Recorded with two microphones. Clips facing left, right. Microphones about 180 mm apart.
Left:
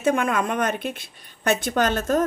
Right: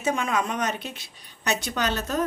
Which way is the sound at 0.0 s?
55° left (ahead or behind).